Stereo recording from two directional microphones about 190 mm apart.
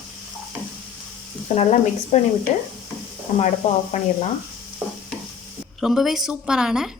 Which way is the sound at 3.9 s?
40° left (ahead or behind).